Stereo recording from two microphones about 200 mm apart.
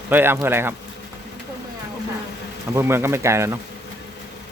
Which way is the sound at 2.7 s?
10° right (ahead or behind).